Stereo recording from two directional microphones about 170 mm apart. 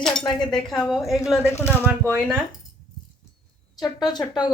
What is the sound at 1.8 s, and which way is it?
Speech, 15° right (ahead or behind).